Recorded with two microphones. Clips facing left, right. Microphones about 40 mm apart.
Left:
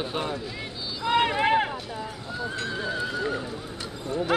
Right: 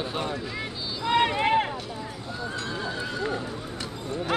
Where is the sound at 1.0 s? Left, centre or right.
Centre.